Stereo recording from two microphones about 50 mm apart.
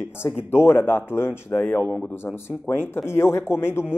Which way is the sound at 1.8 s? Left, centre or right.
Left.